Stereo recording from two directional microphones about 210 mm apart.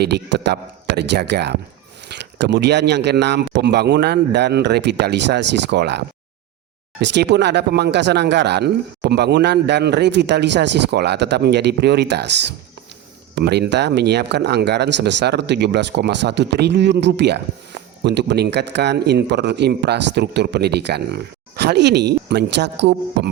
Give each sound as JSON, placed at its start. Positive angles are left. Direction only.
{"t": 0.0, "sound": "speech", "side_deg": -55}
{"t": 13.3, "sound": "speech", "side_deg": -55}